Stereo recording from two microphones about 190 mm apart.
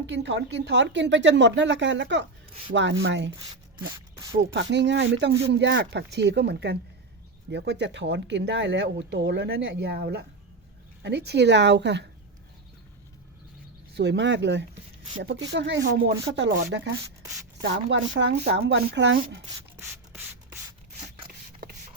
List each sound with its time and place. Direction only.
0.0 s a woman's voice: 70° right (ahead or behind)
4.5 s speech: 65° right (ahead or behind)
13.9 s a woman's voice: 60° right (ahead or behind)
19.7 s sanding: 10° right (ahead or behind)